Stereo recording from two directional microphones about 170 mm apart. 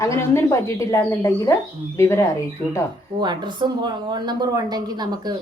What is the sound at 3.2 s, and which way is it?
Speech, 25° right (ahead or behind).